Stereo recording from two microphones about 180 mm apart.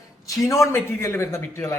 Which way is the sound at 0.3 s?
15° left (ahead or behind).